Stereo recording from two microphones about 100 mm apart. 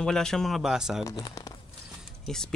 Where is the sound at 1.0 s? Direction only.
40° left (ahead or behind).